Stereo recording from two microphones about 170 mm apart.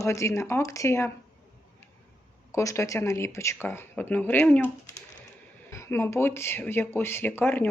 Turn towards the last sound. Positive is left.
turn(degrees=10)  # may be behind; listen again after turning